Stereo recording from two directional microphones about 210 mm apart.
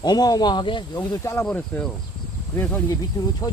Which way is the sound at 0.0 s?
20° left (ahead or behind).